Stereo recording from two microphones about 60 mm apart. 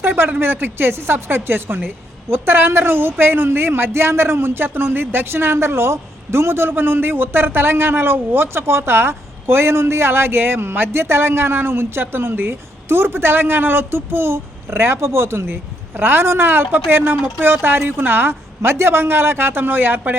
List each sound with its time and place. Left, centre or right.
0.3 s speech: right